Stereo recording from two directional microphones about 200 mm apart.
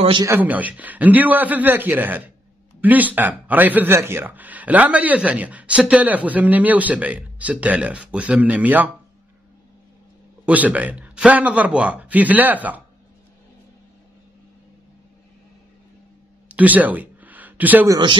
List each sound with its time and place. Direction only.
0.0 s speech: 25° right (ahead or behind)
0.3 s speech: 10° right (ahead or behind)
10.4 s speech: 5° right (ahead or behind)
16.4 s a sound: 10° right (ahead or behind)